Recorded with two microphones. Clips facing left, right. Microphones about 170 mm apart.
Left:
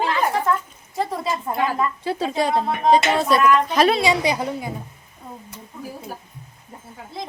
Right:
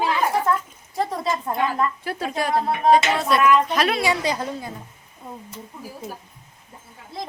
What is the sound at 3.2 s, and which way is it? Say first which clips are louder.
Speech: left 1 dB; centre (ahead or behind).